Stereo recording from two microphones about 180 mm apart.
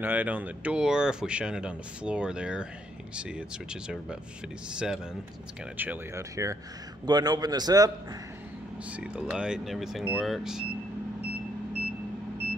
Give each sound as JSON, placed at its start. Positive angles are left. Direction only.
{"t": 0.0, "sound": "speech", "side_deg": -10}
{"t": 4.7, "sound": "speech", "side_deg": -5}
{"t": 8.9, "sound": "speech", "side_deg": -5}